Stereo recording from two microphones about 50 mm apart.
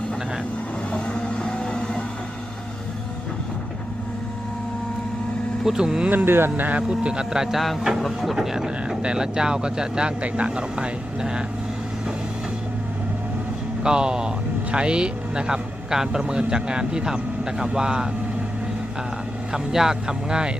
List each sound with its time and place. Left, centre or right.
0.9 s vehicle: left
5.6 s speech: centre
6.1 s speech: right
6.7 s speech: right
7.6 s speech: centre
13.8 s speech: centre
19.5 s speech: centre